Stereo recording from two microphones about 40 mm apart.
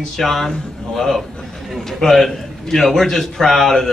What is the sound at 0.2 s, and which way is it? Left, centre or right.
Speech, centre.